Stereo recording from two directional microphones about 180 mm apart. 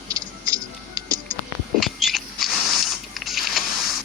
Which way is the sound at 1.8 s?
Centre (ahead or behind).